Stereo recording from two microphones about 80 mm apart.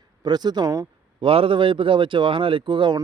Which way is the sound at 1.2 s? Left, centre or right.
Right.